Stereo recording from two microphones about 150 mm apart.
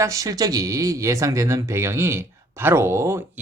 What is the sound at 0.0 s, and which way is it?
Speech, 20° right (ahead or behind).